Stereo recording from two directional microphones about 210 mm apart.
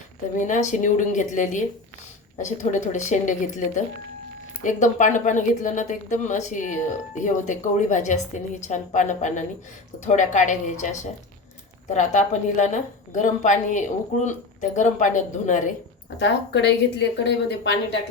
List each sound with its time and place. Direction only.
0.3 s a woman's voice: 35° left (ahead or behind)
16.1 s a woman's voice: 55° left (ahead or behind)